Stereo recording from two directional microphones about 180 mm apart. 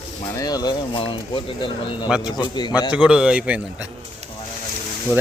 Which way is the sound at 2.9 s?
5° right (ahead or behind).